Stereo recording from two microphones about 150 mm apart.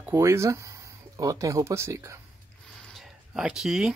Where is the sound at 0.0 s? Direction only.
15° right (ahead or behind).